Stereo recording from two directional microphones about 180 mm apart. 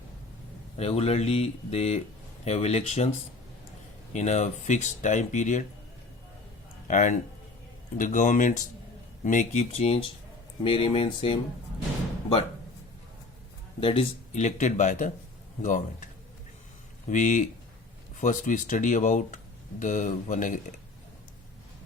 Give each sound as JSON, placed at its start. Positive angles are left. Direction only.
{"t": 0.8, "sound": "speech", "side_deg": 35}
{"t": 4.1, "sound": "speech", "side_deg": 40}
{"t": 6.8, "sound": "a man's voice", "side_deg": 45}
{"t": 13.7, "sound": "speech", "side_deg": 30}
{"t": 17.1, "sound": "speech", "side_deg": 45}